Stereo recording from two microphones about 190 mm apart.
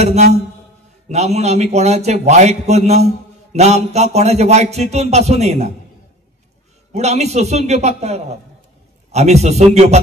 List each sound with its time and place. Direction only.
0.0 s a man's voice: 35° right (ahead or behind)
7.0 s a man's voice: 35° right (ahead or behind)